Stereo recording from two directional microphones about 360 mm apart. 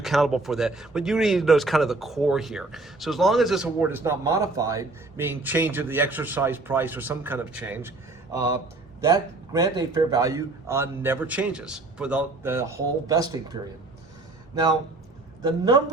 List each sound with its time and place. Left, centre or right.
0.0 s a man's voice: centre